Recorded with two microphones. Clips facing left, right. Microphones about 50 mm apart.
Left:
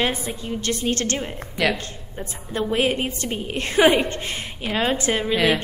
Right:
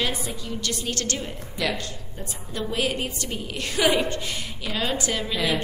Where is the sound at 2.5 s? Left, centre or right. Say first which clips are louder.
Left 5 dB; left.